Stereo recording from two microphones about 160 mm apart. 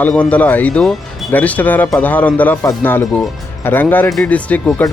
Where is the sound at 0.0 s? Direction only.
10° left (ahead or behind).